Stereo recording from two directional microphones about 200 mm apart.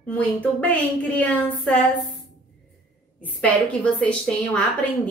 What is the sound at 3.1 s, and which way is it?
A woman's voice, 5° left (ahead or behind).